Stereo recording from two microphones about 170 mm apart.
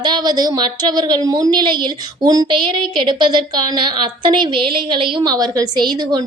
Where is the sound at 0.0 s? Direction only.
25° right (ahead or behind).